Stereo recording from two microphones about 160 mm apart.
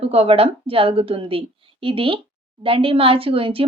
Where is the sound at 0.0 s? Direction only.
40° right (ahead or behind).